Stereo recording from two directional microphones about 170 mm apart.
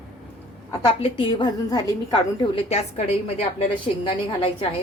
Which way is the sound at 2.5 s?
40° left (ahead or behind).